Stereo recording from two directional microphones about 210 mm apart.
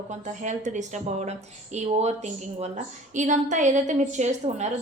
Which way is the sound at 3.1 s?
35° right (ahead or behind).